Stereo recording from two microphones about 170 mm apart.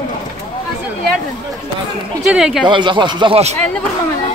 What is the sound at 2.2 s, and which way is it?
Speech, 5° right (ahead or behind).